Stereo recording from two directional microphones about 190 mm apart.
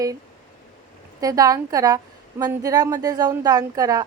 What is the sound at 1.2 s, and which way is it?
A woman's voice, 20° right (ahead or behind).